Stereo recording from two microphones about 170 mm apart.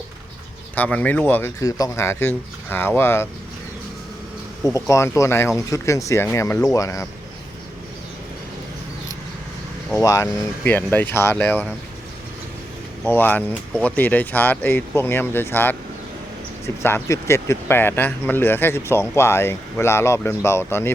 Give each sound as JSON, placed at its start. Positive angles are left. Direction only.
{"t": 0.8, "sound": "speech", "side_deg": 10}
{"t": 4.6, "sound": "speech", "side_deg": 20}
{"t": 9.9, "sound": "speech", "side_deg": 20}
{"t": 13.1, "sound": "speech", "side_deg": 10}
{"t": 16.8, "sound": "speech", "side_deg": 15}